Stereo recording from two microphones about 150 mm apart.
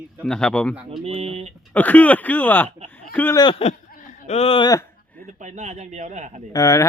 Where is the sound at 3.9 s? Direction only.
60° left (ahead or behind); by 4.7 s 40° left (ahead or behind).